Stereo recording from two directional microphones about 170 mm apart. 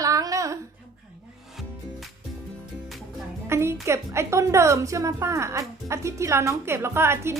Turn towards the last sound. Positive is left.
turn(degrees=-15)  # may be behind; listen again after turning